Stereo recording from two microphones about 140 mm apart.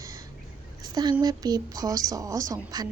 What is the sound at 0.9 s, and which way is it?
A woman's voice, 30° right (ahead or behind).